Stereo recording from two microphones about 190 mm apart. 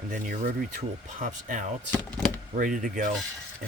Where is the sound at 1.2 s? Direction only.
45° right (ahead or behind).